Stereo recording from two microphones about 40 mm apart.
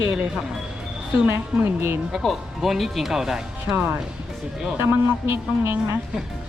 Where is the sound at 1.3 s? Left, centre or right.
Right.